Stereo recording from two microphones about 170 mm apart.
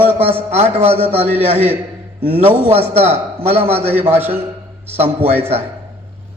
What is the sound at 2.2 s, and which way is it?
A man's voice, 35° right (ahead or behind).